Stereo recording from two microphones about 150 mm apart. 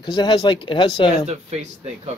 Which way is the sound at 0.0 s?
30° left (ahead or behind).